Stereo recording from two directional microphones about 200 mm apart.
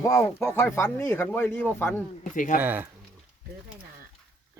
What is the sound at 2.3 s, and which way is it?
Speech, 40° left (ahead or behind).